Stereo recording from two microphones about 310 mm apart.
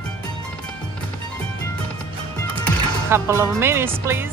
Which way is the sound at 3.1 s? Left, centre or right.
Centre.